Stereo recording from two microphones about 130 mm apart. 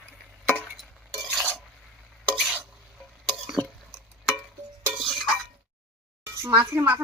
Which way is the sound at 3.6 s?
30° right (ahead or behind).